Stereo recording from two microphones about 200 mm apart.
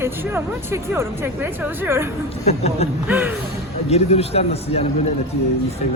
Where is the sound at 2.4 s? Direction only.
30° left (ahead or behind).